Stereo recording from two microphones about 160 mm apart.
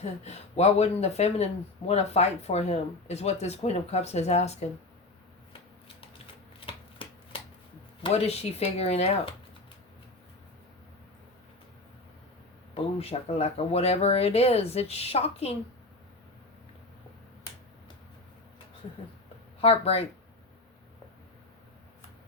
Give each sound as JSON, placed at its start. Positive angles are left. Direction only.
{"t": 0.0, "sound": "speech", "side_deg": 40}
{"t": 6.7, "sound": "shuffling cards", "side_deg": 35}
{"t": 8.0, "sound": "speech", "side_deg": 40}
{"t": 12.7, "sound": "speech", "side_deg": 40}
{"t": 19.6, "sound": "speech", "side_deg": 40}